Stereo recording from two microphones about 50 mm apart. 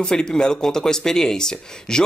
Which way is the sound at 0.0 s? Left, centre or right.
Centre.